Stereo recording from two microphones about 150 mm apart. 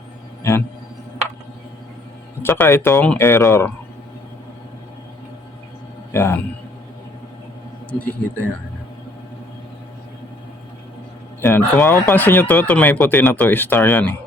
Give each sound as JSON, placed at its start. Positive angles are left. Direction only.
{"t": 2.4, "sound": "speech", "side_deg": 15}
{"t": 6.1, "sound": "a man's voice", "side_deg": 15}
{"t": 7.9, "sound": "speech", "side_deg": 10}
{"t": 11.3, "sound": "speech", "side_deg": 15}